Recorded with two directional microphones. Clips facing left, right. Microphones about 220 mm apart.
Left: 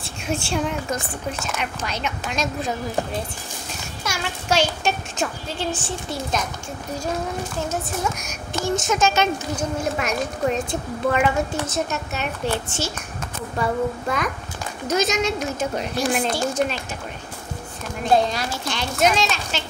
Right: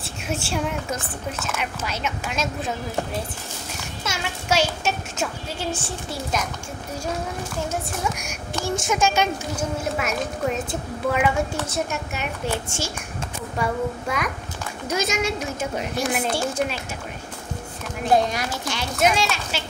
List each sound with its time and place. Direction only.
0.0 s a woman's voice: 5° right (ahead or behind)
4.2 s a woman's voice: 5° right (ahead or behind)
8.2 s a woman's voice: 10° right (ahead or behind)
18.1 s a woman's voice: 20° right (ahead or behind)
18.7 s a woman's voice: 5° right (ahead or behind)